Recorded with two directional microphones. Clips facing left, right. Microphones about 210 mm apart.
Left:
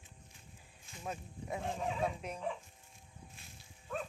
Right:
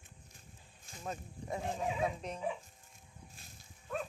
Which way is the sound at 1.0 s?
5° left (ahead or behind).